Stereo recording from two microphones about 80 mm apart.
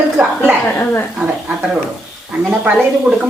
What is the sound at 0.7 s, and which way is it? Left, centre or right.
Speech, left.